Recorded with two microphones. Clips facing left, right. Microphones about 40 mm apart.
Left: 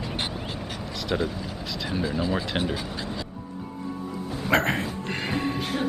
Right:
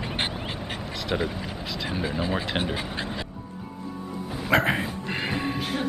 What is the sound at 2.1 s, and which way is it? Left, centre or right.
Speech, centre.